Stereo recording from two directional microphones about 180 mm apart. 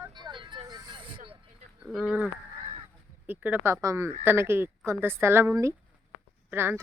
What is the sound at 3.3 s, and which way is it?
Speech, 10° right (ahead or behind).